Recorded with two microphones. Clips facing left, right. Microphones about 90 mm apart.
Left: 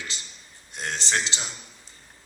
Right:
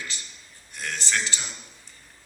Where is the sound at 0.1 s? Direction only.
20° left (ahead or behind).